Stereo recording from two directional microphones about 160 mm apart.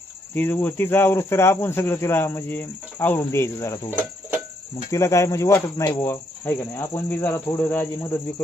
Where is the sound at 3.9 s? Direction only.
10° right (ahead or behind).